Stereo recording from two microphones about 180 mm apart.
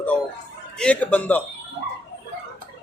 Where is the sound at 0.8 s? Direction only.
5° left (ahead or behind).